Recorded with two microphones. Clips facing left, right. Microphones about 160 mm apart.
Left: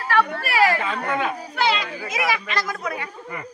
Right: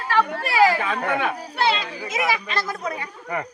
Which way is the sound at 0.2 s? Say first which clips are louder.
Right 2 dB; 15° right (ahead or behind).